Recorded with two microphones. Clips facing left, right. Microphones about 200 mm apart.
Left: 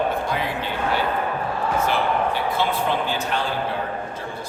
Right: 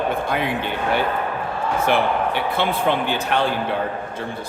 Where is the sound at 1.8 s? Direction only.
65° right (ahead or behind).